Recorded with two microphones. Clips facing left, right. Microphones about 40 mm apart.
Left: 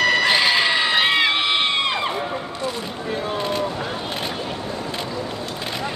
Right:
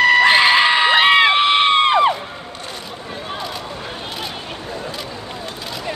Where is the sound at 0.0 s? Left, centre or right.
Right.